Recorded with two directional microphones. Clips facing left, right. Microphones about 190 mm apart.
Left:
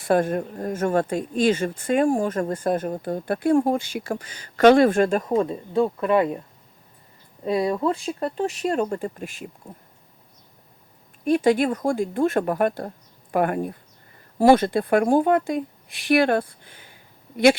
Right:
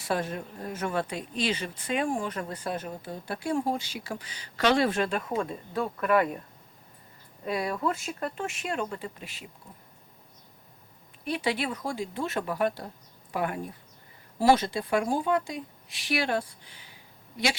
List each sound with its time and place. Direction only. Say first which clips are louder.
0.0 s speech: left 10 dB; 50° left (ahead or behind); by 6.4 s 25° left (ahead or behind)
7.4 s speech: left 7 dB; 30° left (ahead or behind); by 9.5 s 50° left (ahead or behind)
11.3 s speech: left 11 dB; 45° left (ahead or behind)